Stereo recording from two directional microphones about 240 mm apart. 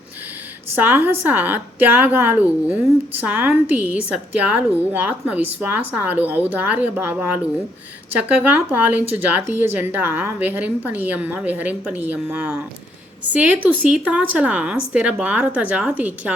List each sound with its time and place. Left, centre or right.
0.8 s a woman's voice: centre